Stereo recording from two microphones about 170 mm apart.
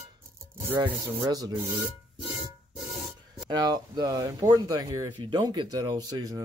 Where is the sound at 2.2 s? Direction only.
25° right (ahead or behind).